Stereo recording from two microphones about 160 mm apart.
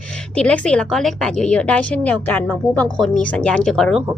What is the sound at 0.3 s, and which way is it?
A woman's voice, 5° left (ahead or behind).